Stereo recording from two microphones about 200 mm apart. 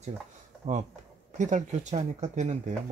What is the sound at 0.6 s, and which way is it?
Speech, 40° right (ahead or behind).